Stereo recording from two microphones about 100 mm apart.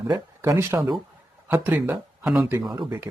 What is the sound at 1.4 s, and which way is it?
Speech, 15° right (ahead or behind).